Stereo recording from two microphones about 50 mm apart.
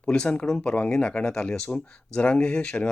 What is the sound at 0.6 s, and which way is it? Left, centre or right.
Speech, left.